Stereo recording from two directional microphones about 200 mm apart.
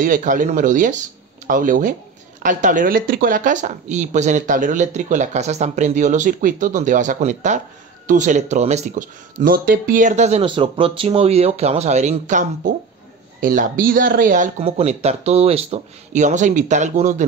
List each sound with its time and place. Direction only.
0.0 s speech: 40° right (ahead or behind)
14.6 s speech: 30° right (ahead or behind)